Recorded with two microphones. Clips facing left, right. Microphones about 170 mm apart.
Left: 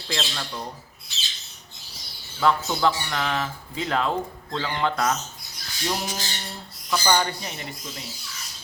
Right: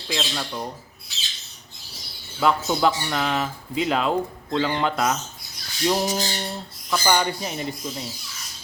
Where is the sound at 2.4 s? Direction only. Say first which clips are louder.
Right 1 dB; 15° right (ahead or behind).